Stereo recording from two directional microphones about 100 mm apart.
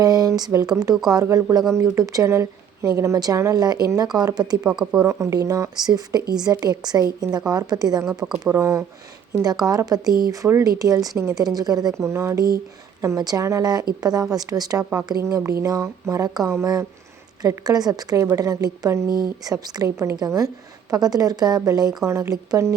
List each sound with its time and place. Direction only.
0.0 s speech: 40° right (ahead or behind)
8.2 s speech: 15° right (ahead or behind)
8.5 s speech: 30° right (ahead or behind)
9.4 s speech: 40° right (ahead or behind)
12.0 s speech: 25° right (ahead or behind)
19.0 s speech: 40° left (ahead or behind)
19.5 s speech: 40° right (ahead or behind)